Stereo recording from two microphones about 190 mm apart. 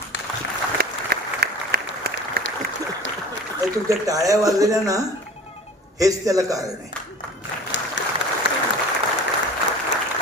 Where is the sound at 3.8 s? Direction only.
20° right (ahead or behind).